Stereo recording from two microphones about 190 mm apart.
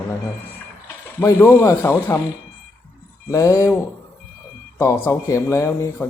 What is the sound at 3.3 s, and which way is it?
Speech, 15° left (ahead or behind).